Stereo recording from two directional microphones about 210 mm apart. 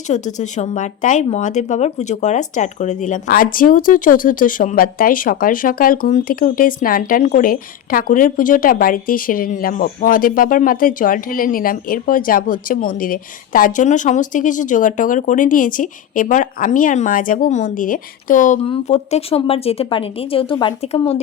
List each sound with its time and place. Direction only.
0.1 s speech: 35° left (ahead or behind)